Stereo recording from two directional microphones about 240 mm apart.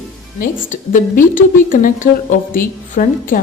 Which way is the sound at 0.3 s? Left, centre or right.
Left.